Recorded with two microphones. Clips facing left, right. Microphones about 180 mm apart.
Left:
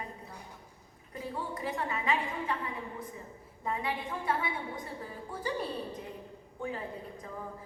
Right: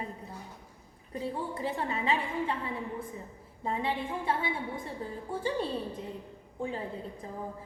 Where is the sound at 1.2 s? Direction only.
30° right (ahead or behind).